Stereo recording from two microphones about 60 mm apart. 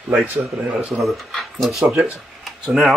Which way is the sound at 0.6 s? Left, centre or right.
Centre.